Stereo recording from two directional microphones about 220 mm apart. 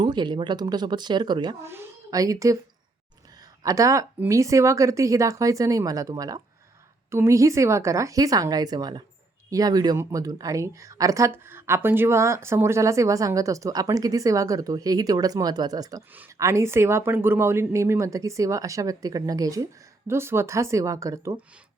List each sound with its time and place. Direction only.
0.0 s speech: 20° right (ahead or behind)
3.6 s speech: 15° right (ahead or behind)